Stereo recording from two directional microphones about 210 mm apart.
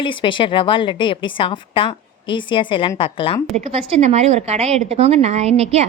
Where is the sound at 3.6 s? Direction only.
30° right (ahead or behind).